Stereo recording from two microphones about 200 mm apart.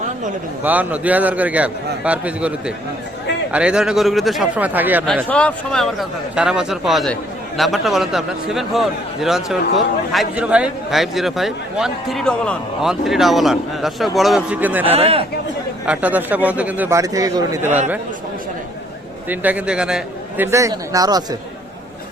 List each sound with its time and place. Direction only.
0.6 s a man's voice: 10° right (ahead or behind)
5.0 s a man's voice: 5° left (ahead or behind)
14.8 s a man's voice: 30° right (ahead or behind)
15.9 s a man's voice: 5° right (ahead or behind)
19.3 s a man's voice: 10° right (ahead or behind)